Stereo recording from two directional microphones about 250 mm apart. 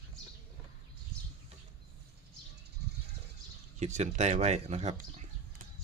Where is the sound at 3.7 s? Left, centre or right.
Right.